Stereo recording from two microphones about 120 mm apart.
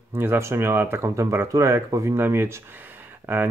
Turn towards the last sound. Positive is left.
turn(degrees=-20)  # may be behind; listen again after turning